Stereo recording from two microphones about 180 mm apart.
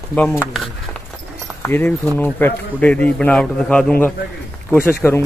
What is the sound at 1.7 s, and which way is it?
A man's voice, 10° left (ahead or behind).